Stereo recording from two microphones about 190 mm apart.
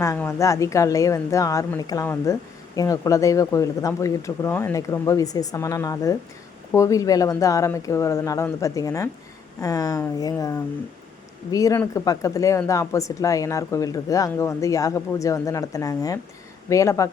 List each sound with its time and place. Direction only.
0.0 s speech: 15° left (ahead or behind)